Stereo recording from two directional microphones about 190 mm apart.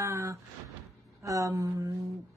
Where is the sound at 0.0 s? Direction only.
15° right (ahead or behind).